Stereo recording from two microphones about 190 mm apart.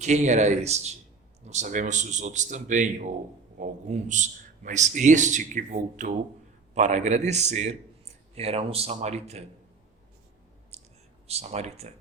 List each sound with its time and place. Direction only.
0.0 s a man's voice: 40° right (ahead or behind)
10.7 s whispering: 35° right (ahead or behind)
11.3 s a man's voice: 35° right (ahead or behind)